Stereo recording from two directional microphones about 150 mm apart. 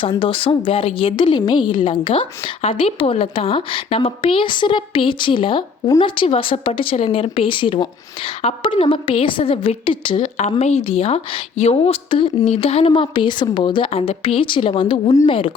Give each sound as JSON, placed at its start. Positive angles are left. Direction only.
{"t": 0.0, "sound": "a woman's voice", "side_deg": 35}
{"t": 10.3, "sound": "a woman's voice", "side_deg": 50}